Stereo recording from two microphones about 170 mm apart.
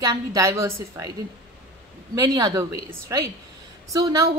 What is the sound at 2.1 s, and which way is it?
A woman's voice, 20° right (ahead or behind).